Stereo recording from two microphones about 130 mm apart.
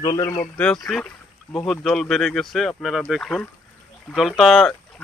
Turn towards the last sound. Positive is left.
turn(degrees=0)  # may be behind; listen again after turning